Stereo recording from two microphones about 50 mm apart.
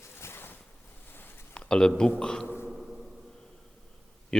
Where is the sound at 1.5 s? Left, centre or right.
Centre.